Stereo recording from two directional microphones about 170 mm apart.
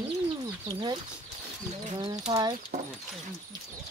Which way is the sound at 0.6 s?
25° right (ahead or behind).